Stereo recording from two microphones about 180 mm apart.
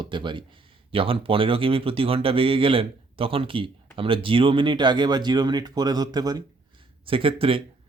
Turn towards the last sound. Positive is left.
turn(degrees=-30)  # may be behind; listen again after turning